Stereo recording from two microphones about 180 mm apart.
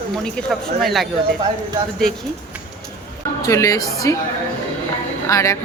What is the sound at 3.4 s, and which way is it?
Speech, 15° left (ahead or behind).